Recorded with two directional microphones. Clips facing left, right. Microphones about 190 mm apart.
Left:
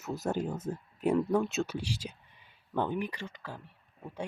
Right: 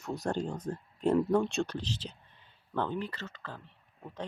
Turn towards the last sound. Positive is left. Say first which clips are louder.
# left 1 dB
turn(degrees=10)  # may be behind; listen again after turning